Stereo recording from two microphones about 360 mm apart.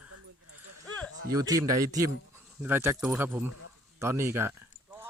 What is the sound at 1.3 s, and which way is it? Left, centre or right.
Speech, centre.